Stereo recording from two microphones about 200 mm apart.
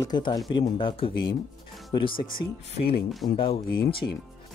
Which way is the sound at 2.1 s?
45° left (ahead or behind).